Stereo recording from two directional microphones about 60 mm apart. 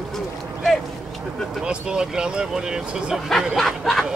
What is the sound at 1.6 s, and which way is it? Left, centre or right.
Speech, centre.